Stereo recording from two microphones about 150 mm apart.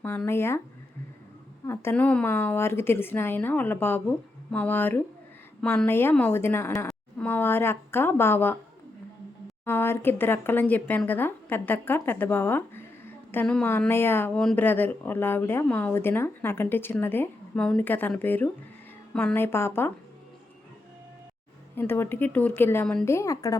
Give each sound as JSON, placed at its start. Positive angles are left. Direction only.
{"t": 0.0, "sound": "speech", "side_deg": 10}
{"t": 1.6, "sound": "speech", "side_deg": 15}
{"t": 9.6, "sound": "speech", "side_deg": 15}
{"t": 21.8, "sound": "speech", "side_deg": 15}
{"t": 23.1, "sound": "a woman's voice", "side_deg": 20}